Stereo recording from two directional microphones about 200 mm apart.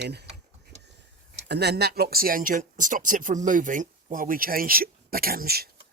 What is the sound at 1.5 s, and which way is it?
Speech, 55° right (ahead or behind).